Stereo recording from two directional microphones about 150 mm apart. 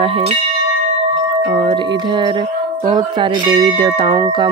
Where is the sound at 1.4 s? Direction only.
35° right (ahead or behind).